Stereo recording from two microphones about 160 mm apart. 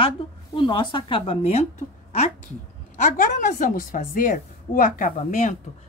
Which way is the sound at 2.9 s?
50° left (ahead or behind).